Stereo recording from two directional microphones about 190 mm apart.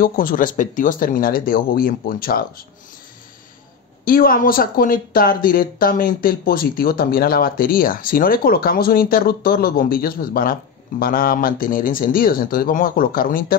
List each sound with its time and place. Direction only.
0.0 s speech: 45° left (ahead or behind)
4.0 s speech: 50° left (ahead or behind)